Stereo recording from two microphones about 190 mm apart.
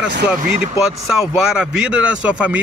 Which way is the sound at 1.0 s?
5° right (ahead or behind).